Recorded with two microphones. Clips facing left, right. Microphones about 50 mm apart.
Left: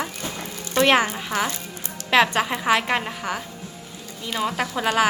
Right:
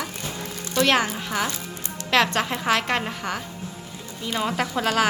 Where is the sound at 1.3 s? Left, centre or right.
Left.